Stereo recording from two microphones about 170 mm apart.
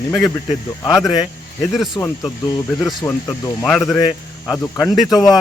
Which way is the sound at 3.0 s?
20° left (ahead or behind).